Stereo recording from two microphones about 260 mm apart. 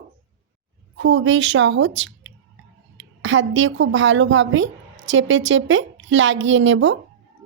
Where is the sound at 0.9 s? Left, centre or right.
Right.